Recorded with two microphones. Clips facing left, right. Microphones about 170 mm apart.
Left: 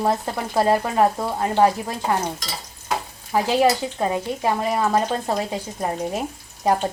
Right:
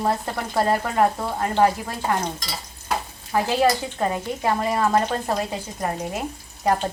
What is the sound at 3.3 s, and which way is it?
A woman's voice, 10° left (ahead or behind).